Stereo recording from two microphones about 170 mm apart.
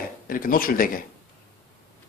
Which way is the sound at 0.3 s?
55° left (ahead or behind).